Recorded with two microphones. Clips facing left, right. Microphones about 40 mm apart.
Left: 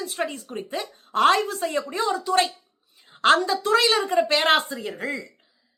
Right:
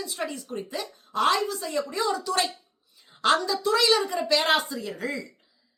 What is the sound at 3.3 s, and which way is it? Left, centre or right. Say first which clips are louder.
A woman's voice: left 4 dB; left.